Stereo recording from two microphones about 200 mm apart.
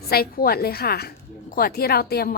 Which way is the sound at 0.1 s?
50° left (ahead or behind).